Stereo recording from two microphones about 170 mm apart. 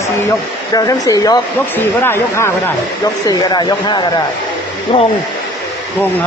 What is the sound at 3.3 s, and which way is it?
Speech, 25° left (ahead or behind).